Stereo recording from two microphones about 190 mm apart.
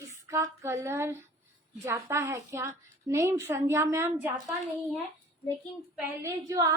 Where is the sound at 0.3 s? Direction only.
15° right (ahead or behind).